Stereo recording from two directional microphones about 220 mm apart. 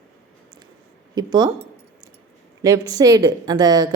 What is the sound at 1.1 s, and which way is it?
Speech, 20° right (ahead or behind).